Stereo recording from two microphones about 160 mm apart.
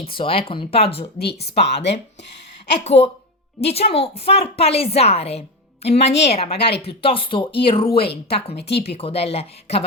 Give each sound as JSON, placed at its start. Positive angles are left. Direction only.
{"t": 0.0, "sound": "a woman's voice", "side_deg": 35}
{"t": 1.2, "sound": "speech", "side_deg": 90}
{"t": 2.7, "sound": "a woman's voice", "side_deg": 40}
{"t": 7.9, "sound": "speech", "side_deg": 85}
{"t": 8.3, "sound": "a woman's voice", "side_deg": 40}